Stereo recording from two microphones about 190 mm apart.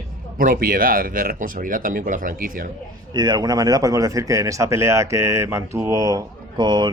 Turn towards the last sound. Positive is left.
turn(degrees=-20)  # may be behind; listen again after turning